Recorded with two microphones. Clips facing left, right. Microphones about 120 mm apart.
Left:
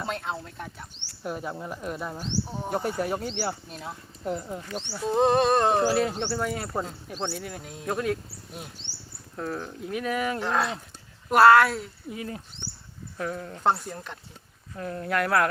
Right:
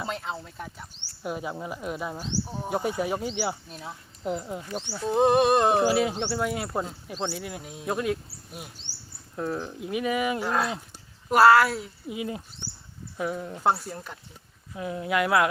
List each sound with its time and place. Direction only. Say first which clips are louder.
0.0 s speech: left 1 dB; centre (ahead or behind)
5.3 s speech: right 2 dB; 15° right (ahead or behind)